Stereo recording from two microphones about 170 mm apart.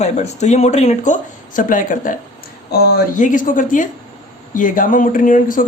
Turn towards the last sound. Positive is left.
turn(degrees=50)  # may be behind; listen again after turning